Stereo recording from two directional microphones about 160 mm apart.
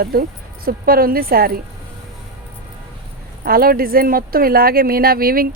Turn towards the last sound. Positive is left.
turn(degrees=-65)  # may be behind; listen again after turning